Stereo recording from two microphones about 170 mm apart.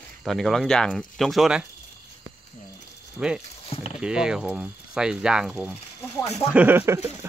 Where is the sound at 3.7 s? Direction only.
35° left (ahead or behind).